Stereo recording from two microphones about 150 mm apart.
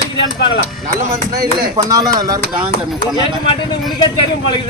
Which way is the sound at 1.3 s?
85° right.